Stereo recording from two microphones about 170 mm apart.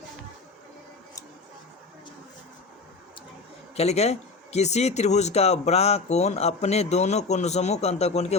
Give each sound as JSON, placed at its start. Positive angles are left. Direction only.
{"t": 3.8, "sound": "speech", "side_deg": 40}